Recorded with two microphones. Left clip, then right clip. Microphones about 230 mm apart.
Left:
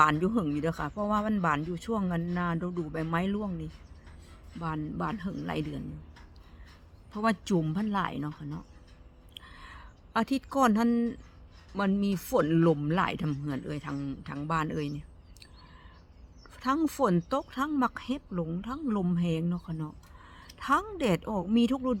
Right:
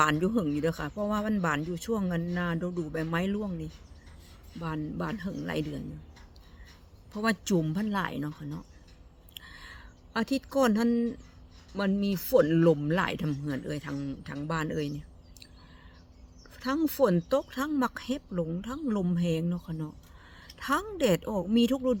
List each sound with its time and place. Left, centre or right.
0.0 s speech: centre
7.2 s speech: centre
9.3 s a sound: centre
11.7 s speech: centre
16.6 s speech: centre